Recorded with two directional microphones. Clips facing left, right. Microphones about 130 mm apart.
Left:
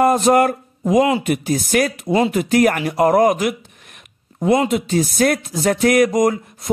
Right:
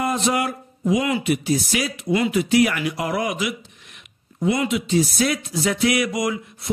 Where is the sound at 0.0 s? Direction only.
50° left (ahead or behind).